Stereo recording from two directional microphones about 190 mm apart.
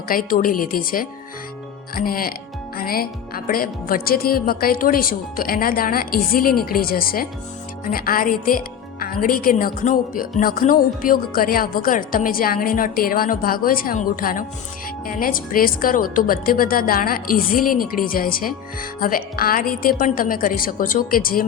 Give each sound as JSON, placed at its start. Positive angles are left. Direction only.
{"t": 0.1, "sound": "a woman's voice", "side_deg": 45}